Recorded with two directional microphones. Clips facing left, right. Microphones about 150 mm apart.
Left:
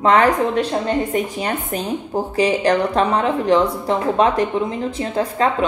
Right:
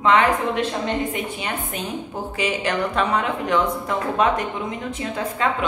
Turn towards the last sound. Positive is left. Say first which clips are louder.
# left 5 dB
turn(degrees=35)  # may be behind; listen again after turning